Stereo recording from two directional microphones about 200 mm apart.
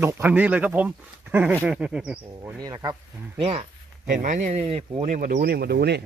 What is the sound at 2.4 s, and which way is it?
Speech, 15° right (ahead or behind).